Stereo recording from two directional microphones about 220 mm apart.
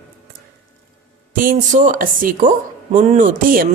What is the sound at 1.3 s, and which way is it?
Speech, 35° right (ahead or behind).